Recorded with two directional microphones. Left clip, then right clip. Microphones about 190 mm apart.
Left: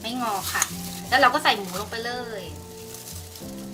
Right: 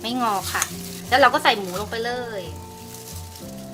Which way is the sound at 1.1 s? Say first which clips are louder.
Right 3 dB; 50° right (ahead or behind).